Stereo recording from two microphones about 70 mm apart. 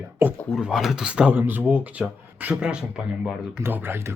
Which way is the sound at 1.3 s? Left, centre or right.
Right.